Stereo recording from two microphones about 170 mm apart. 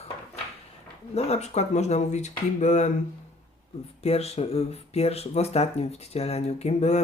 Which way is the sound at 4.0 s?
35° left (ahead or behind).